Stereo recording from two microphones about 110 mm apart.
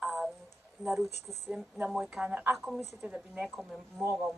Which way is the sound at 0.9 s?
Centre (ahead or behind).